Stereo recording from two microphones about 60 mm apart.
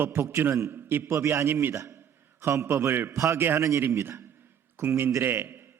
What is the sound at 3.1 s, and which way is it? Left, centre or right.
Speech, right.